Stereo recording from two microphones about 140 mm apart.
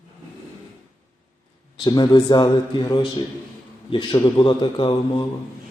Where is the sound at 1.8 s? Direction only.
30° left (ahead or behind).